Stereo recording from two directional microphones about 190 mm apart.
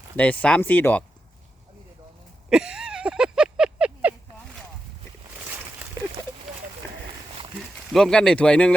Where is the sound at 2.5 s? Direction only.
5° right (ahead or behind).